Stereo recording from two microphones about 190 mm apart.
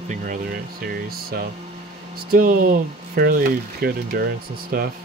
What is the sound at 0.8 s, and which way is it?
Speech, 50° right (ahead or behind).